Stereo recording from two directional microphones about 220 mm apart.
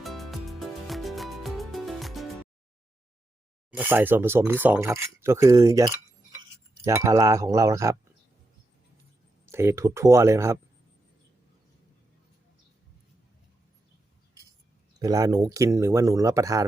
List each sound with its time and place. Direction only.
0.0 s music: centre (ahead or behind)
3.7 s speech: 10° right (ahead or behind)
9.5 s speech: 10° right (ahead or behind)
14.9 s speech: 15° right (ahead or behind)